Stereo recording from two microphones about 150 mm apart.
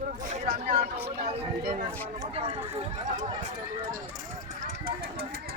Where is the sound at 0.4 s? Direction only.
45° right (ahead or behind).